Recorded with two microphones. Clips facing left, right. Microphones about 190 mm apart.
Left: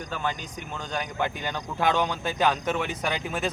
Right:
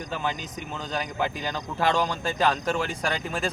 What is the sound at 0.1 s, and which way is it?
A man's voice, 5° right (ahead or behind).